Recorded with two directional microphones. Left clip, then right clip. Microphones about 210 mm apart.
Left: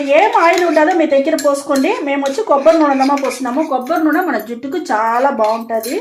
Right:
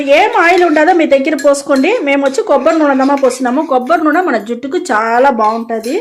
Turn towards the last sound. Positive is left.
turn(degrees=-50)  # may be behind; listen again after turning